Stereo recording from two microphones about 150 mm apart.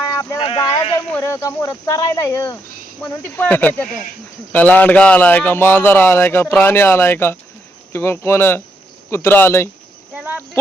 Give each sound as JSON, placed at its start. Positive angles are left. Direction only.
{"t": 0.3, "sound": "speech", "side_deg": 35}
{"t": 1.1, "sound": "speech", "side_deg": 20}
{"t": 10.2, "sound": "a sound", "side_deg": -5}